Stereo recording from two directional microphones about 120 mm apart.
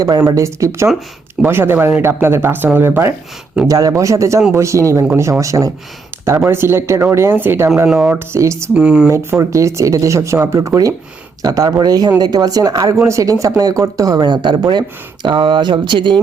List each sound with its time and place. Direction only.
0.0 s speech: 30° right (ahead or behind)
8.7 s speech: 5° right (ahead or behind)
9.0 s speech: 25° right (ahead or behind); by 16.1 s 40° right (ahead or behind)